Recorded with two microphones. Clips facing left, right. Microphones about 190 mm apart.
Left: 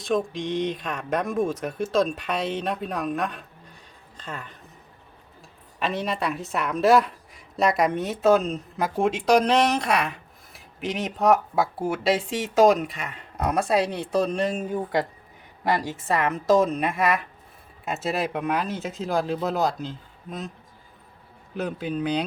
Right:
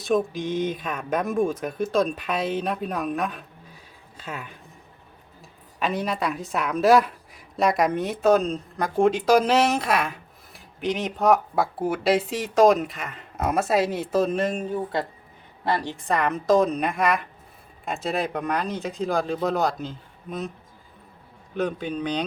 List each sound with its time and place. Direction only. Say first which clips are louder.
0.0 s speech: right 2 dB; centre (ahead or behind)
5.8 s speech: right 1 dB; centre (ahead or behind)
14.7 s speech: left 1 dB; 15° left (ahead or behind)
21.5 s speech: right 2 dB; 5° left (ahead or behind)